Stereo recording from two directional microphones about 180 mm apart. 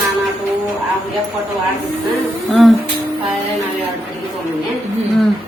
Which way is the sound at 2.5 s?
Centre (ahead or behind).